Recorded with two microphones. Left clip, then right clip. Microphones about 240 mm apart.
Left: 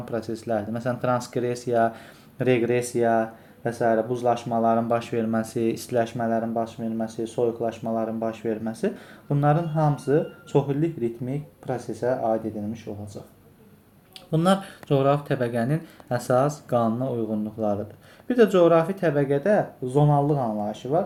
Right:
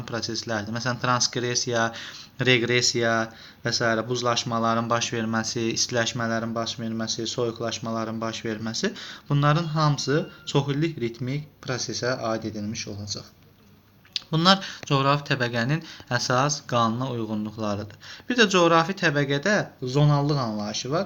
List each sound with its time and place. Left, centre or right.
0.0 s speech: centre
14.3 s speech: centre
20.0 s speech: right